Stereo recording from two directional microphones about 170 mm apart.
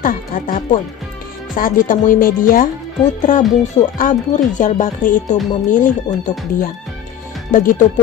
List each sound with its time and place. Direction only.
0.0 s speech: 55° left (ahead or behind)